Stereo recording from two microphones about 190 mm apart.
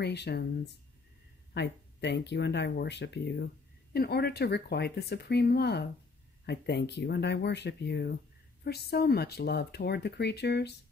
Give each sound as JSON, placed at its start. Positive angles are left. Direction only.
{"t": 0.0, "sound": "speech", "side_deg": 60}
{"t": 1.5, "sound": "speech", "side_deg": 65}